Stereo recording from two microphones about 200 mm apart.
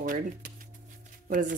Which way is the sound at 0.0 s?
45° right (ahead or behind).